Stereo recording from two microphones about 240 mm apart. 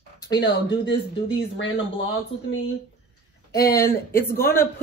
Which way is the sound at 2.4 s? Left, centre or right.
Left.